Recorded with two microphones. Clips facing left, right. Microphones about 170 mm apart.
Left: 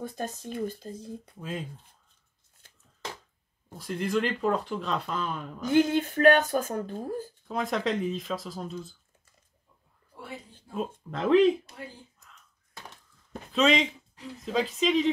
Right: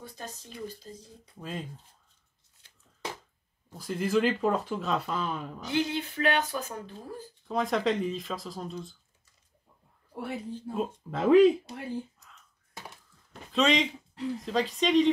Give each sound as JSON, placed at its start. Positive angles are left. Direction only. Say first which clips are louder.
{"t": 0.0, "sound": "speech", "louder": "left 8 dB", "side_deg": 50}
{"t": 1.4, "sound": "speech", "louder": "left 1 dB", "side_deg": 0}
{"t": 3.7, "sound": "speech", "louder": "right 1 dB", "side_deg": 0}
{"t": 5.6, "sound": "speech", "louder": "left 8 dB", "side_deg": 50}
{"t": 7.4, "sound": "speech", "louder": "right 2 dB", "side_deg": 0}
{"t": 10.1, "sound": "speech", "louder": "right 6 dB", "side_deg": -65}
{"t": 10.8, "sound": "speech", "louder": "even", "side_deg": -5}
{"t": 13.5, "sound": "speech", "louder": "left 1 dB", "side_deg": 0}